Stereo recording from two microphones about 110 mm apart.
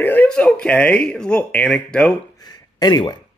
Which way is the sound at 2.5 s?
40° left (ahead or behind).